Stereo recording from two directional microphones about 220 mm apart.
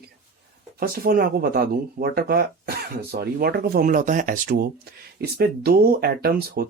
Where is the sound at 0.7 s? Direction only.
45° right (ahead or behind).